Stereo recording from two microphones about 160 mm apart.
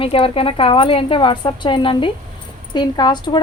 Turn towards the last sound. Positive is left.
turn(degrees=25)  # may be behind; listen again after turning